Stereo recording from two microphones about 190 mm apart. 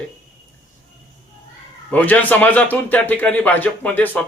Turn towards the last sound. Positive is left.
turn(degrees=10)  # may be behind; listen again after turning